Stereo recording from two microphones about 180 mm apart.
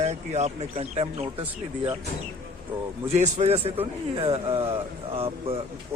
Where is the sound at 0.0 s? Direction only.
40° right (ahead or behind).